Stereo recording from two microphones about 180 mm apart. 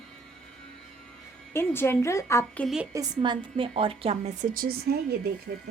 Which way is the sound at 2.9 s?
25° right (ahead or behind).